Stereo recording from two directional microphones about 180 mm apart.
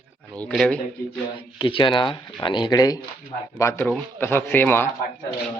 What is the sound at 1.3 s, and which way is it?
Speech, 30° left (ahead or behind).